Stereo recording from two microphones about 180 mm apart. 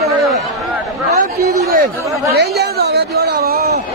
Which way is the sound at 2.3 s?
65° right (ahead or behind).